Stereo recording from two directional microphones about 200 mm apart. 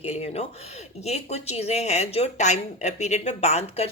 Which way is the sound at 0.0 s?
30° left (ahead or behind).